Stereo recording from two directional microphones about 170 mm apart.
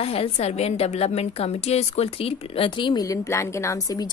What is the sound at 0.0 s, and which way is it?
A woman's voice, 35° left (ahead or behind).